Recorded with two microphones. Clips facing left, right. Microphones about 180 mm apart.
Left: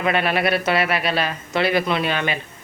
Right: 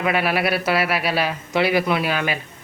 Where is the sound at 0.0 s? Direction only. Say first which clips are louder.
Even; 5° right (ahead or behind).